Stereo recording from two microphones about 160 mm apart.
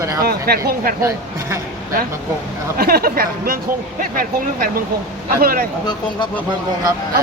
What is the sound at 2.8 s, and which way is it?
Speech, 75° right (ahead or behind).